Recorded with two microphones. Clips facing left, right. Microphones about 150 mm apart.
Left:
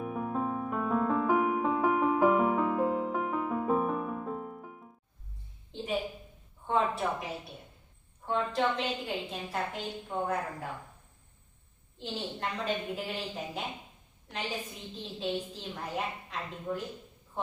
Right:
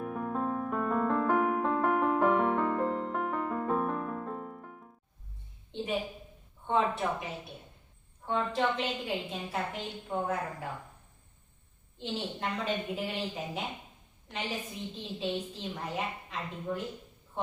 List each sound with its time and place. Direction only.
0.0 s piano: 5° left (ahead or behind)
5.7 s a sound: centre (ahead or behind)
6.7 s a woman's voice: centre (ahead or behind)
11.9 s a woman's voice: centre (ahead or behind)